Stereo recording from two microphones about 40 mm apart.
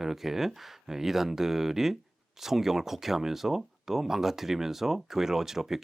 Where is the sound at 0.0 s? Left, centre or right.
Centre.